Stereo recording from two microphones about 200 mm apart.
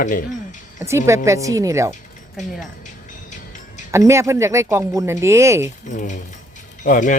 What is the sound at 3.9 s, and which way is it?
Speech, 15° right (ahead or behind).